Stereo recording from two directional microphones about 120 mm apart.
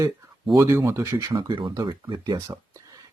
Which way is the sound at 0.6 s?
20° right (ahead or behind).